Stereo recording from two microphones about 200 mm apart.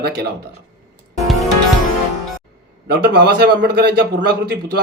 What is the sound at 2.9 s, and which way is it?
Speech, 50° right (ahead or behind).